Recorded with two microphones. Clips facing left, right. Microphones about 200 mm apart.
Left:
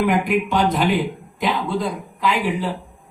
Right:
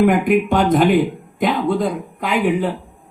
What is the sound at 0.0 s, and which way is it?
A man's voice, 50° right (ahead or behind).